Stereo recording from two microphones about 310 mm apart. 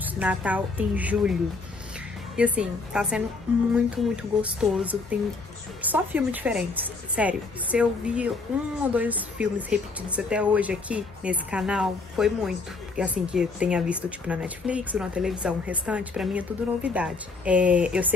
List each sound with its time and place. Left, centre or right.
0.0 s speech: centre
2.3 s speech: centre